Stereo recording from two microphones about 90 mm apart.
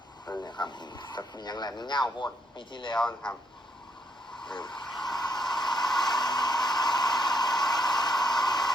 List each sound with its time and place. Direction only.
0.4 s speech: 55° left (ahead or behind)
3.0 s speech: 10° left (ahead or behind)
4.4 s vehicle: 60° left (ahead or behind)